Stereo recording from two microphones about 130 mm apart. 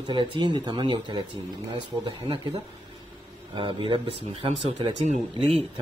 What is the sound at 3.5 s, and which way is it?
Speech, 40° right (ahead or behind).